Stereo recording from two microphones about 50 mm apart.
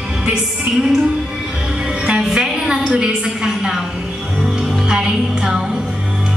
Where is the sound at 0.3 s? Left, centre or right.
Centre.